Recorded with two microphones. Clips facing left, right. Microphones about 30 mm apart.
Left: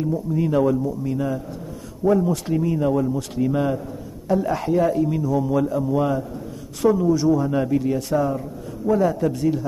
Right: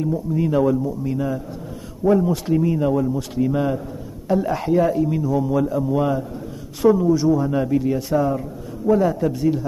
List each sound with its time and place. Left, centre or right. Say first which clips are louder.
0.0 s a man's voice: right 1 dB; centre